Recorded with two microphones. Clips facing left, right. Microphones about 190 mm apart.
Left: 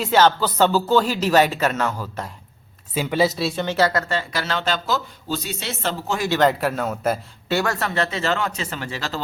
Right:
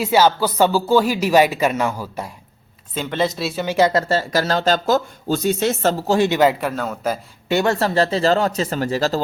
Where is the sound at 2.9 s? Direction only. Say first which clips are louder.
Left 1 dB; 10° left (ahead or behind).